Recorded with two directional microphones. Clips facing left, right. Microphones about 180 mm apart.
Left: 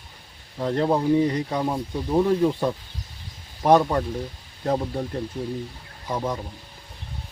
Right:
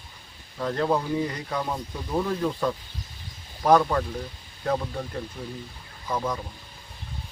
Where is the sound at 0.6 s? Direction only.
25° left (ahead or behind).